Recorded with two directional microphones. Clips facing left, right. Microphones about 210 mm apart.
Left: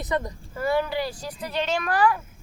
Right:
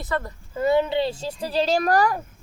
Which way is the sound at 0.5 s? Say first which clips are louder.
Right 4 dB; 20° right (ahead or behind).